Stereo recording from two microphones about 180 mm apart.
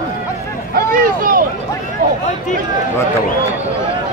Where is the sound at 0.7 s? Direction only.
50° right (ahead or behind).